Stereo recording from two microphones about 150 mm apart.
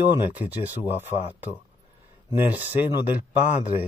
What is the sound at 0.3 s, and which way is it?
Speech, 10° right (ahead or behind).